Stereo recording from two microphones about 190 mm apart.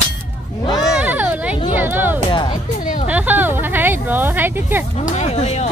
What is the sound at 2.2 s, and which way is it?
Music, 25° left (ahead or behind).